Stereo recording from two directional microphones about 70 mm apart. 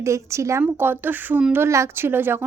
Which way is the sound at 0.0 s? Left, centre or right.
Right.